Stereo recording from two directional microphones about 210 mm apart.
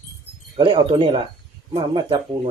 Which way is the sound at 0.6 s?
25° right (ahead or behind).